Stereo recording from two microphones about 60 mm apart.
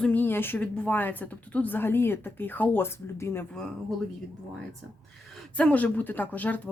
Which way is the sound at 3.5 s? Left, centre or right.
Centre.